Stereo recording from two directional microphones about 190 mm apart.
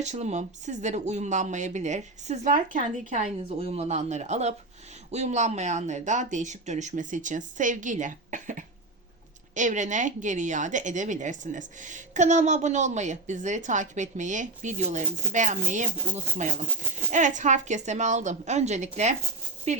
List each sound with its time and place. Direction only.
0.0 s a woman's voice: 35° right (ahead or behind)